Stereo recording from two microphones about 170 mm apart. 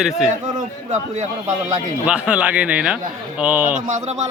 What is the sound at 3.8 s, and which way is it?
Speech, 45° right (ahead or behind).